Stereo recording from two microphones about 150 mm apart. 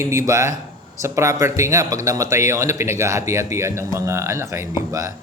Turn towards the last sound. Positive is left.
turn(degrees=-20)  # may be behind; listen again after turning